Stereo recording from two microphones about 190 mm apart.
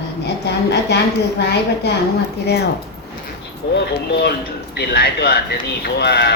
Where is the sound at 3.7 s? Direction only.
60° left (ahead or behind).